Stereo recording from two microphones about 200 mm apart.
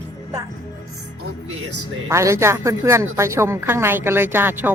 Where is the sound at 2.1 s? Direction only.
15° right (ahead or behind).